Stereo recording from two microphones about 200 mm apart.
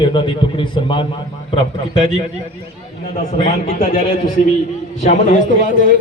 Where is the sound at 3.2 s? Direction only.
35° left (ahead or behind).